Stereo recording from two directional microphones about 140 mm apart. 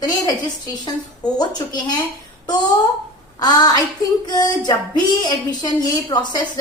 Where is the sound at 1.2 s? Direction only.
30° left (ahead or behind).